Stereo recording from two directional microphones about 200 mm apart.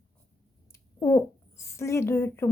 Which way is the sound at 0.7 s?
15° left (ahead or behind).